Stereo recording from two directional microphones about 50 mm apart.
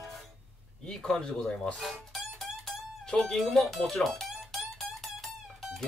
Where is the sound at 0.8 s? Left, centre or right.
Centre.